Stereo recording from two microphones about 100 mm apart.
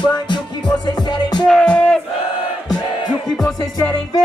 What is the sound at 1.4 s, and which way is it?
Music, 5° left (ahead or behind).